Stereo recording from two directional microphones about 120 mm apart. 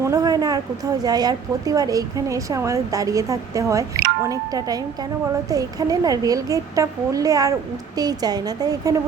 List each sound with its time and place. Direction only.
0.0 s a woman's voice: 30° right (ahead or behind)